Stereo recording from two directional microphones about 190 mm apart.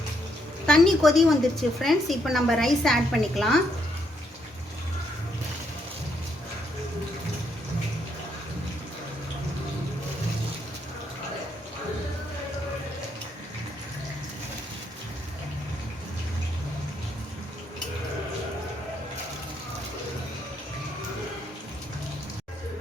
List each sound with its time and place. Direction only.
0.7 s a woman's voice: centre (ahead or behind)